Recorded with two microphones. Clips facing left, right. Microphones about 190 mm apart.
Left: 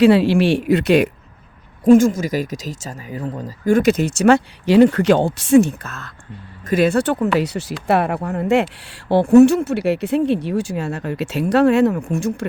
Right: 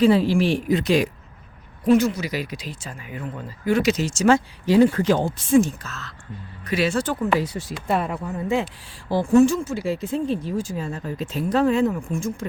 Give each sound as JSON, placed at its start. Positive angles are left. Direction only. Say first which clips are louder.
{"t": 0.0, "sound": "speech", "louder": "left 5 dB", "side_deg": 75}
{"t": 1.8, "sound": "speech", "louder": "left 6 dB", "side_deg": 45}